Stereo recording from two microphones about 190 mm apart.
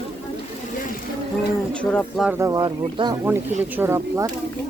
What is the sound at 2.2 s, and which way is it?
Speech, 15° right (ahead or behind).